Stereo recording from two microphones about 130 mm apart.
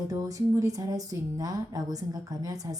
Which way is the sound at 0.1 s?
25° right (ahead or behind).